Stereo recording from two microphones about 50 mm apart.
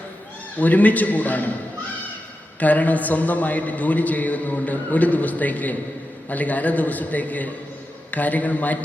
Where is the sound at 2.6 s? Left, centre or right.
Left.